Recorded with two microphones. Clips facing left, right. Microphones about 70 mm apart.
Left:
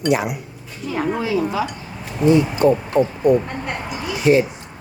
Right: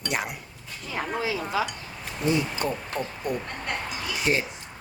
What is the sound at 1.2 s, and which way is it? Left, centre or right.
Dishes, left.